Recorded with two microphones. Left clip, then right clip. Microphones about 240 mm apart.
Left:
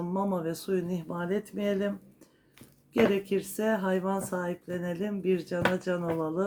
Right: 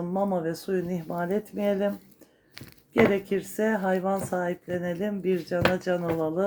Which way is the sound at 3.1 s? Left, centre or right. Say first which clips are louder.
Right 2 dB; centre.